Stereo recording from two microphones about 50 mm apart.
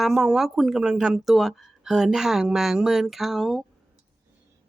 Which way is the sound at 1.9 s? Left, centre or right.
Centre.